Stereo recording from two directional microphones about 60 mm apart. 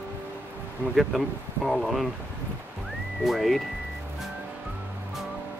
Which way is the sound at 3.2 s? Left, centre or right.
Centre.